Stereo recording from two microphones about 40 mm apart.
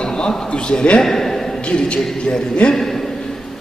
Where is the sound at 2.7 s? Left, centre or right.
Centre.